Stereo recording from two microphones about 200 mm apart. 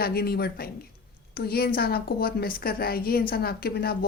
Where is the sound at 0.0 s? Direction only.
50° left (ahead or behind).